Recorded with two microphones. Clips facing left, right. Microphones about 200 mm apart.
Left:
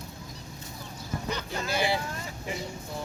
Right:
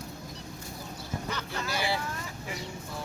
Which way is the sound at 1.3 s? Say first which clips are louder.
Left 4 dB; 15° left (ahead or behind).